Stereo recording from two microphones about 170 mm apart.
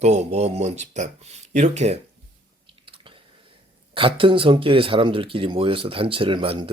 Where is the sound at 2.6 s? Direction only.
30° right (ahead or behind).